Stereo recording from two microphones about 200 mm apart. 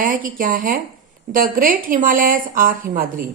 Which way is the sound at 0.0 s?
45° right (ahead or behind).